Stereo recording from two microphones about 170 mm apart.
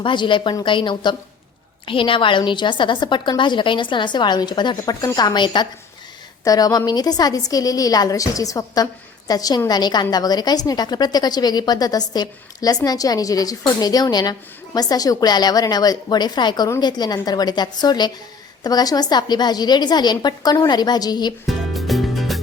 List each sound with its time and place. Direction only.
0.0 s a woman's voice: 30° left (ahead or behind)
21.4 s music: centre (ahead or behind)